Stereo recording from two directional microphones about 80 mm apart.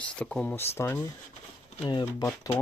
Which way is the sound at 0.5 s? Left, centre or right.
Left.